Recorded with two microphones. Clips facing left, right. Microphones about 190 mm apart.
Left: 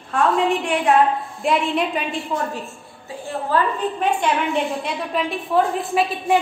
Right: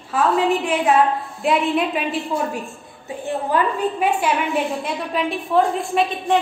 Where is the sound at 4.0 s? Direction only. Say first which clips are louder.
Left 1 dB; 10° right (ahead or behind).